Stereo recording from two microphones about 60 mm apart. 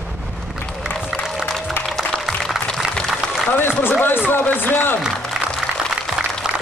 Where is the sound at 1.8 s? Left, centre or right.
Left.